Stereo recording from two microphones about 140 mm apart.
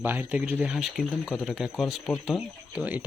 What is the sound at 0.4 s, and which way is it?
Speech, 5° right (ahead or behind).